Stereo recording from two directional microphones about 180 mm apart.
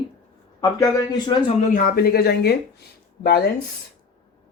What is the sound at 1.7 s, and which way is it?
Speech, 55° left (ahead or behind).